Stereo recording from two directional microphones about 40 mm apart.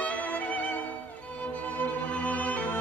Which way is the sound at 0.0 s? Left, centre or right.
Left.